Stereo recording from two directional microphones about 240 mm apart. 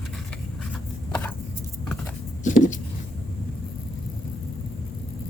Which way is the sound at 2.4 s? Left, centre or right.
Left.